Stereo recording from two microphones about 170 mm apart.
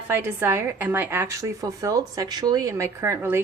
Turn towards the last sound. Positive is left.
turn(degrees=-15)  # may be behind; listen again after turning